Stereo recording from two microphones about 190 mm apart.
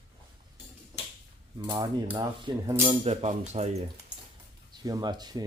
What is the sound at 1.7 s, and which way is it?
Speech, 20° right (ahead or behind).